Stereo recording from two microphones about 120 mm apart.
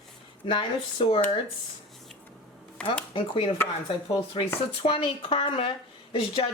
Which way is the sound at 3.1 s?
50° left (ahead or behind).